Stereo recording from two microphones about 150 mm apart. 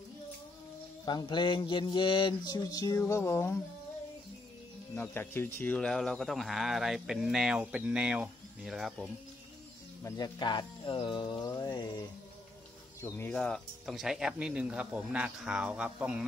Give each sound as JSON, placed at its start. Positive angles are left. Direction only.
{"t": 1.0, "sound": "mantra", "side_deg": 30}
{"t": 4.9, "sound": "speech", "side_deg": 15}
{"t": 10.0, "sound": "music", "side_deg": 25}
{"t": 13.0, "sound": "speech", "side_deg": 15}